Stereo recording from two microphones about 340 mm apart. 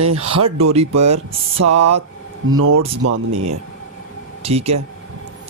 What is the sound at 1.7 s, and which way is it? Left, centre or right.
Speech, right.